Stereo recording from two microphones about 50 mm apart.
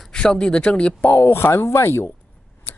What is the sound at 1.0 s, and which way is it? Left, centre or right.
Speech, left.